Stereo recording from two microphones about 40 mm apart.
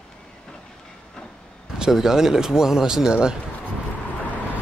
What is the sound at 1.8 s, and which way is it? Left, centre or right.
Speech, centre.